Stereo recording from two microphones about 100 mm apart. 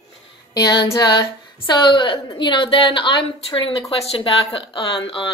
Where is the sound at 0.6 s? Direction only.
45° left (ahead or behind).